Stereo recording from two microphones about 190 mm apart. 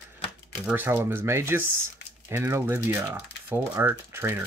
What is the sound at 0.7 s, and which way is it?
Speech, 10° right (ahead or behind).